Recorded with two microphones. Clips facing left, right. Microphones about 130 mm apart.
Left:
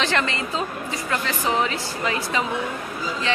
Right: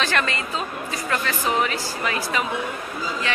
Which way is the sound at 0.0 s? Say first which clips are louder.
Left 1 dB; 20° left (ahead or behind).